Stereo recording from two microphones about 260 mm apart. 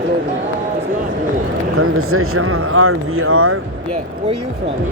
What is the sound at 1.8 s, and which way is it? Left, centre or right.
Speech, right.